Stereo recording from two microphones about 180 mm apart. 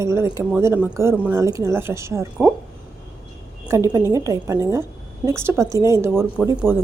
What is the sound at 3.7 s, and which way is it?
A woman's voice, 15° right (ahead or behind).